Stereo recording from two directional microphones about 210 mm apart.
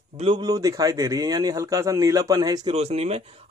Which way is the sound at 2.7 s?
30° right (ahead or behind).